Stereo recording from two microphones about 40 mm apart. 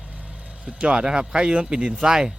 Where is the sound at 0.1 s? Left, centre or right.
Right.